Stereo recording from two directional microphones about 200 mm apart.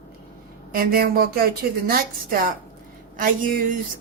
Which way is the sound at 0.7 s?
50° right (ahead or behind).